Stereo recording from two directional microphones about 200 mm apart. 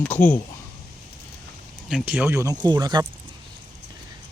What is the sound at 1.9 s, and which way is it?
Speech, 5° right (ahead or behind).